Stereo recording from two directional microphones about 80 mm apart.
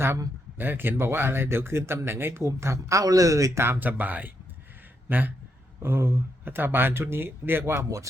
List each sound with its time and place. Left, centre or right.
0.6 s a man's voice: right